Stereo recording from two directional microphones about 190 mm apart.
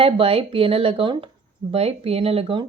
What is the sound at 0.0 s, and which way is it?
A woman's voice, 30° right (ahead or behind).